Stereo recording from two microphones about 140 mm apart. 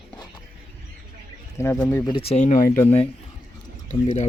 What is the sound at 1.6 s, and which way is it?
Speech, 20° left (ahead or behind).